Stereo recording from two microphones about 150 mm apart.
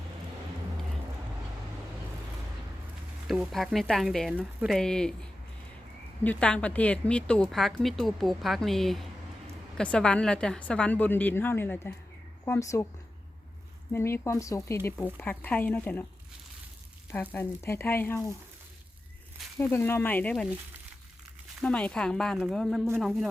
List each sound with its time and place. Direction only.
3.2 s a woman's voice: centre (ahead or behind); by 12.9 s 20° left (ahead or behind)
13.9 s a woman's voice: 15° left (ahead or behind)
17.1 s a woman's voice: 15° left (ahead or behind)
19.5 s a woman's voice: 15° left (ahead or behind)
21.6 s speech: 5° left (ahead or behind)